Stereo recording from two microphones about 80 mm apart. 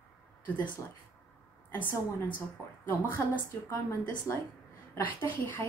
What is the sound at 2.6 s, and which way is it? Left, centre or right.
A woman's voice, left.